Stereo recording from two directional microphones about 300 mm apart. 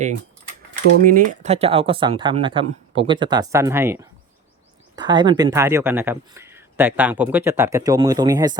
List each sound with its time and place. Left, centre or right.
1.0 s speech: right